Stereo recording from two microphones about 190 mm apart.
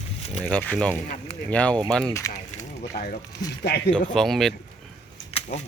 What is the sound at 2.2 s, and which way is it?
Speech, 15° left (ahead or behind).